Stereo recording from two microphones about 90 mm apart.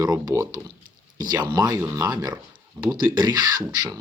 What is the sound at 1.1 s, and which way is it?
Speech, 50° right (ahead or behind).